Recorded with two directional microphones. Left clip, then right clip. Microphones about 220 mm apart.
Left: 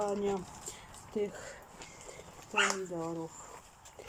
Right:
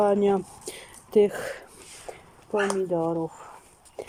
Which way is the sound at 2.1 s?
45° right (ahead or behind).